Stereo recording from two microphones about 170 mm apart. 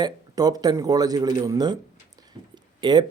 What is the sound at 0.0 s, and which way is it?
Speech, 20° right (ahead or behind).